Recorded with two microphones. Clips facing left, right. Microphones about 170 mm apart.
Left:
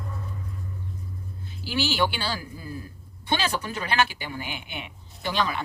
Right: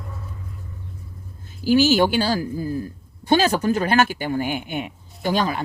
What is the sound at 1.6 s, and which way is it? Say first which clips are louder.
Speech: right 10 dB; 45° right (ahead or behind).